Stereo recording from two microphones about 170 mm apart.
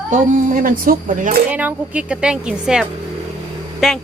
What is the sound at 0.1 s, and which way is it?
Speech, 50° right (ahead or behind).